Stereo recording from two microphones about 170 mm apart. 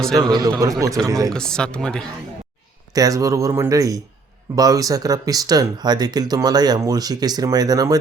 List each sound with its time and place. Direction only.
0.2 s speech: 25° right (ahead or behind)
1.3 s speech: 5° left (ahead or behind)
2.9 s speech: 20° right (ahead or behind)